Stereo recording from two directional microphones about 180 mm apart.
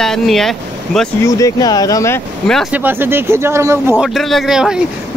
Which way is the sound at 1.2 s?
20° left (ahead or behind).